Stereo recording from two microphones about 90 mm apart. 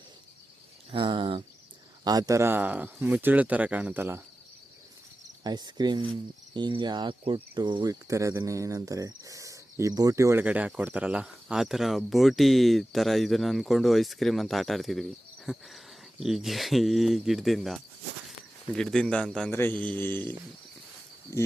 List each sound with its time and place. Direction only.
0.9 s speech: 75° right (ahead or behind)
2.0 s speech: 40° right (ahead or behind)
2.5 s speech: 20° right (ahead or behind)
5.4 s cricket: 50° right (ahead or behind)
7.9 s speech: 35° right (ahead or behind)
10.4 s speech: 15° right (ahead or behind); by 19.5 s 10° left (ahead or behind)
19.5 s a man's voice: 25° left (ahead or behind)
21.3 s speech: 30° left (ahead or behind)